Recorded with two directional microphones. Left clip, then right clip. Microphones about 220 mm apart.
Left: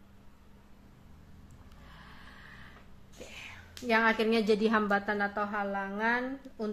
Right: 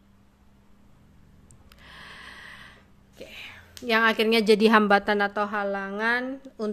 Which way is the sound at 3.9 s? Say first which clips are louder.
Right 5 dB; 45° right (ahead or behind).